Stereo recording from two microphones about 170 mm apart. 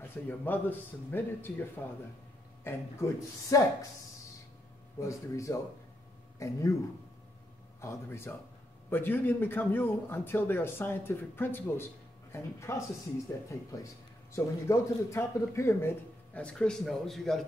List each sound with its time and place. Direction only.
0.0 s speech: 10° left (ahead or behind)
5.0 s speech: 20° left (ahead or behind)
7.8 s speech: 15° left (ahead or behind)
14.3 s a man's voice: 15° left (ahead or behind); by 17.5 s centre (ahead or behind)